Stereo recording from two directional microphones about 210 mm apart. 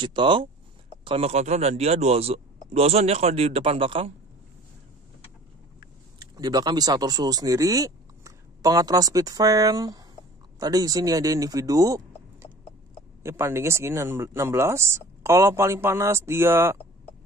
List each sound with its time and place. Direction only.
0.0 s speech: 20° right (ahead or behind)
6.3 s speech: 20° right (ahead or behind)